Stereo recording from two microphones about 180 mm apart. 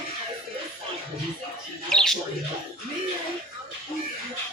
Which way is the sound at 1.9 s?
5° left (ahead or behind).